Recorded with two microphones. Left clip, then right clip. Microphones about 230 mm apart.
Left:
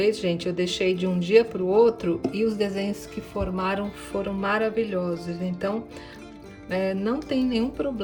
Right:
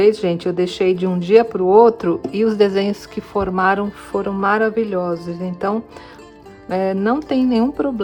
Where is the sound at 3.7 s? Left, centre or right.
Centre.